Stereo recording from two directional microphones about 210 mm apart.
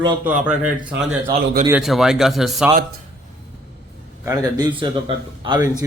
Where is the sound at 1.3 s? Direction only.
20° right (ahead or behind).